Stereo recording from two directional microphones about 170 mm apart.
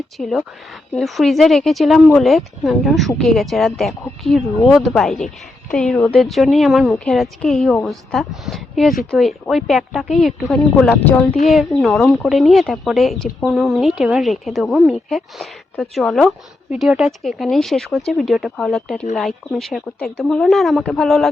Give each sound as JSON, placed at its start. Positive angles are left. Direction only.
{"t": 0.2, "sound": "speech", "side_deg": 0}